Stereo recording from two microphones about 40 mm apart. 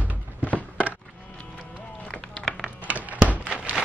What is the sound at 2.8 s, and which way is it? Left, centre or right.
Music, right.